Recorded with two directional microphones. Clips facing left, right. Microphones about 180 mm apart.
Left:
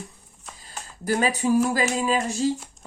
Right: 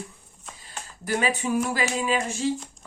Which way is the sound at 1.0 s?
40° left (ahead or behind).